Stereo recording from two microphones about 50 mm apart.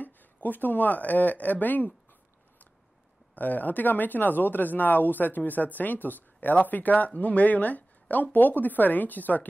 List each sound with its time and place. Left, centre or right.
0.0 s speech: left
3.3 s speech: left